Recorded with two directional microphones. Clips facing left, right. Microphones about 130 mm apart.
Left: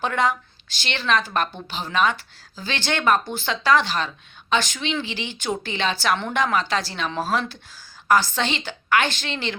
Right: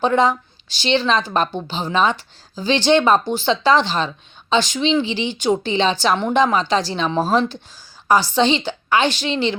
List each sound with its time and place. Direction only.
0.0 s a woman's voice: 25° right (ahead or behind)